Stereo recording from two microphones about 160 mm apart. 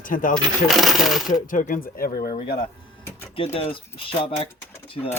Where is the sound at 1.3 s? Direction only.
55° left (ahead or behind).